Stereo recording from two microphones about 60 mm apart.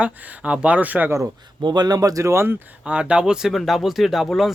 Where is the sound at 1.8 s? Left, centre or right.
Right.